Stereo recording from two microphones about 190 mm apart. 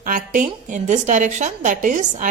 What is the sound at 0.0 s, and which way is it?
A woman's voice, 45° right (ahead or behind).